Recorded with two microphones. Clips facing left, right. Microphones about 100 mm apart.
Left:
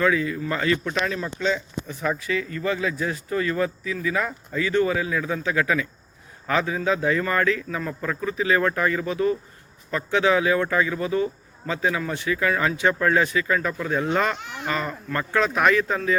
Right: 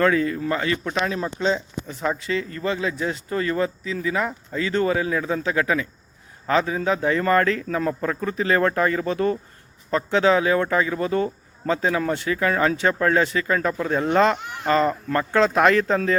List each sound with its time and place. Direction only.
0.0 s a man's voice: 45° right (ahead or behind)
0.5 s speech: 25° right (ahead or behind)
2.7 s speech: 20° right (ahead or behind); by 9.4 s 45° right (ahead or behind)
9.9 s speech: 30° right (ahead or behind)
11.1 s speech: 45° right (ahead or behind)
11.8 s speech: 35° right (ahead or behind)